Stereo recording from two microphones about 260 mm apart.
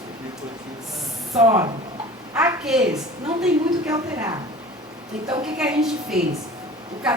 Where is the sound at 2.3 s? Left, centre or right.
Centre.